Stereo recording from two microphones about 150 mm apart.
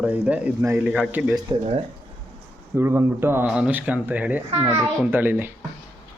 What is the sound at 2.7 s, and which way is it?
Speech, 15° right (ahead or behind).